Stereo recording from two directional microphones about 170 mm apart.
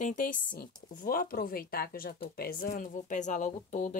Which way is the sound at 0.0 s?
50° left (ahead or behind).